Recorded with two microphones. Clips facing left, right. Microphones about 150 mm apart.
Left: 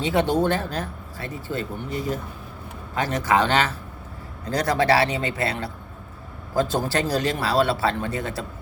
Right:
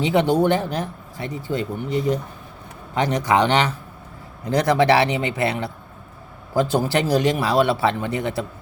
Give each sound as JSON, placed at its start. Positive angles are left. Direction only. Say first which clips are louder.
{"t": 0.0, "sound": "a man's voice", "louder": "right 3 dB", "side_deg": -15}